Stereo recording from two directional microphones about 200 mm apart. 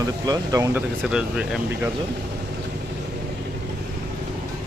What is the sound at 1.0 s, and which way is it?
Speech, 5° right (ahead or behind).